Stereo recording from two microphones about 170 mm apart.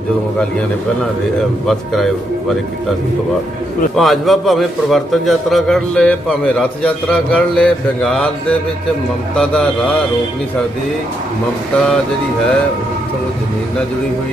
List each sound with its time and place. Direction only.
3.9 s a man's voice: centre (ahead or behind)
9.4 s a man's voice: 5° left (ahead or behind)